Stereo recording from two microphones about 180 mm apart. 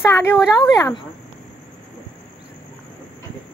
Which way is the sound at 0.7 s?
15° left (ahead or behind).